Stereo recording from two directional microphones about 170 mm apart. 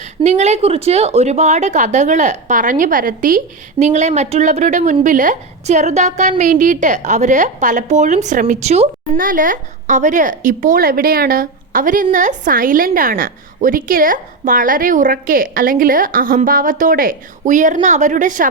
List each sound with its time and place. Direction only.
0.0 s speech: 40° right (ahead or behind)
9.2 s speech: 50° right (ahead or behind)